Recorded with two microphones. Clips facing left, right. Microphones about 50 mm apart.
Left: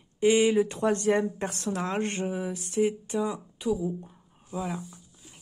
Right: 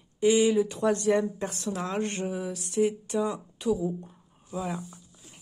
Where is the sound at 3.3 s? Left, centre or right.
Centre.